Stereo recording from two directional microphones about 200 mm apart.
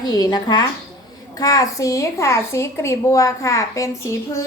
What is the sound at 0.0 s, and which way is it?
A woman's voice, 20° left (ahead or behind).